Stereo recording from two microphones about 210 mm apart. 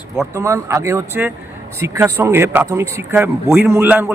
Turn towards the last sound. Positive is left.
turn(degrees=-10)  # may be behind; listen again after turning